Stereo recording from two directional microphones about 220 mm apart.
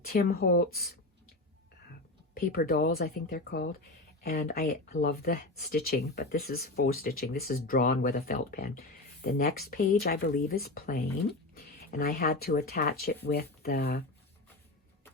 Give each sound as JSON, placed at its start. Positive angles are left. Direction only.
{"t": 0.0, "sound": "speech", "side_deg": 45}
{"t": 2.3, "sound": "speech", "side_deg": 45}